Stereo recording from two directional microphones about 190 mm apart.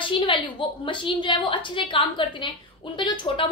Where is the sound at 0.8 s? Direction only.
25° left (ahead or behind).